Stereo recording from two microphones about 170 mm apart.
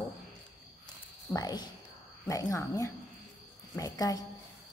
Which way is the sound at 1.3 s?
25° left (ahead or behind).